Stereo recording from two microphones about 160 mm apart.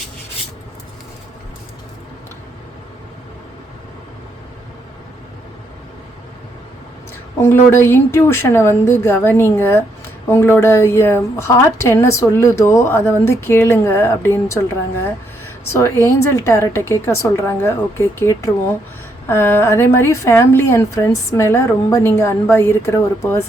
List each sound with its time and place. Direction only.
7.4 s a woman's voice: 15° left (ahead or behind)
15.8 s a woman's voice: 15° left (ahead or behind)